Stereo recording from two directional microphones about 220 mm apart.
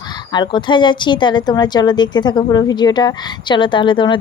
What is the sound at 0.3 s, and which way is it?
A woman's voice, 20° left (ahead or behind).